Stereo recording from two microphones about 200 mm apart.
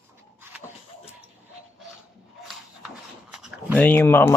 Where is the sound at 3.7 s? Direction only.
10° left (ahead or behind).